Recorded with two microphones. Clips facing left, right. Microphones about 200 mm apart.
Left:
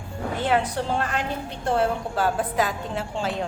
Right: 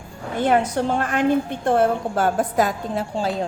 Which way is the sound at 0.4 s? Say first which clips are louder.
Right 5 dB; 45° right (ahead or behind).